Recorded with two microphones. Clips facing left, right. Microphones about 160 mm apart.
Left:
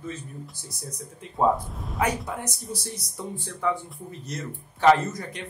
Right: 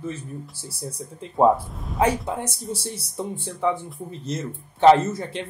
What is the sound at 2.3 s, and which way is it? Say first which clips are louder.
Speech: right 4 dB; 25° right (ahead or behind).